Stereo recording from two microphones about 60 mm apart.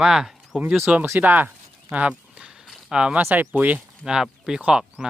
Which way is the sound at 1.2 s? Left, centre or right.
Right.